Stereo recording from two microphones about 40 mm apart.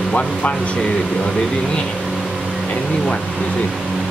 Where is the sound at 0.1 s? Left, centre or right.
Left.